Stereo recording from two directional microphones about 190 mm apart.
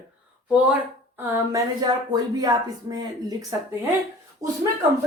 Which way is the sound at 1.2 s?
15° right (ahead or behind).